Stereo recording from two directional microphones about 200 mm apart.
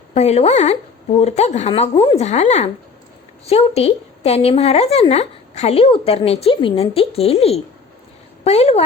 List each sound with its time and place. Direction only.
0.1 s a woman's voice: 35° left (ahead or behind)